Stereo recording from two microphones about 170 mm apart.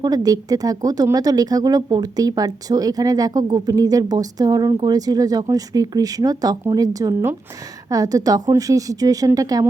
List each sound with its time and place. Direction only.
0.0 s a woman's voice: 20° right (ahead or behind)